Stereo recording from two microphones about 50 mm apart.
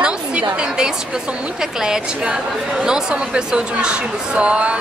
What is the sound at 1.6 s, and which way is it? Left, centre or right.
A woman's voice, centre.